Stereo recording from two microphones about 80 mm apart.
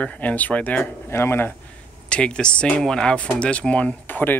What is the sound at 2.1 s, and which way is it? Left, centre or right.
Speech, centre.